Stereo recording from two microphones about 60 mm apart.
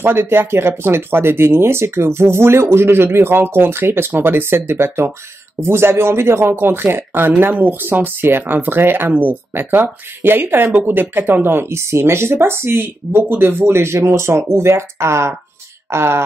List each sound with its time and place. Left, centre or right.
0.0 s speech: right